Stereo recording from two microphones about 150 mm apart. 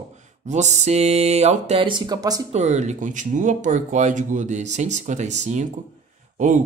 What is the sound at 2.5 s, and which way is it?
Speech, 50° right (ahead or behind).